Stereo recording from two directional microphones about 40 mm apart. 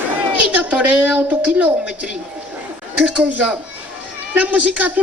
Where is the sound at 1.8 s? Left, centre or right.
Right.